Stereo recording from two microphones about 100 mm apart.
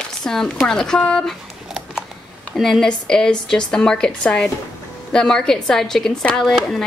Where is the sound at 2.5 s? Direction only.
5° left (ahead or behind).